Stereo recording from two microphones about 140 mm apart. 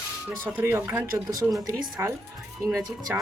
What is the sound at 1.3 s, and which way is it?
Speech, 25° right (ahead or behind).